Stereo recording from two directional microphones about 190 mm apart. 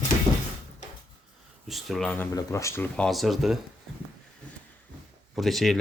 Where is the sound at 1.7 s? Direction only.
Centre (ahead or behind).